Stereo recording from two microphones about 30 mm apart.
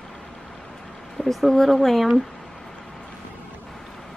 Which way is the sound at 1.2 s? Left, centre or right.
Centre.